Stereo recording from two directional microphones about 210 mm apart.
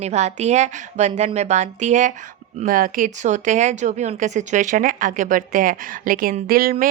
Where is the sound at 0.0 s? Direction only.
30° right (ahead or behind).